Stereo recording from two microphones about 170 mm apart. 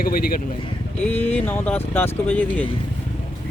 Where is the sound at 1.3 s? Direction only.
10° left (ahead or behind).